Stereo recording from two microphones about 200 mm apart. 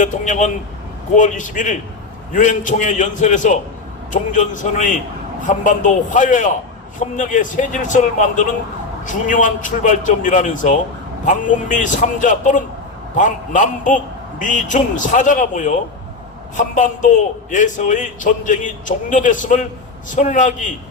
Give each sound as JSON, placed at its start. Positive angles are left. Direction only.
{"t": 0.0, "sound": "a man's voice", "side_deg": 40}